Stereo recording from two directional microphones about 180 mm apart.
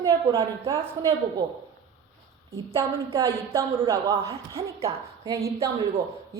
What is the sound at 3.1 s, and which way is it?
A woman's voice, 20° right (ahead or behind).